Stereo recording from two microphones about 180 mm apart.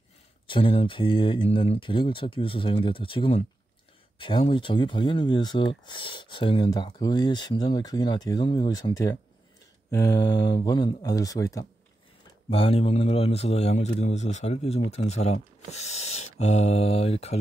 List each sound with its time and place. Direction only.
0.5 s speech: 30° left (ahead or behind)
12.4 s a man's voice: 30° left (ahead or behind)